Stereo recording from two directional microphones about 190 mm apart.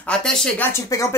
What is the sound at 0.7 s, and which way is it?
Speech, 15° left (ahead or behind).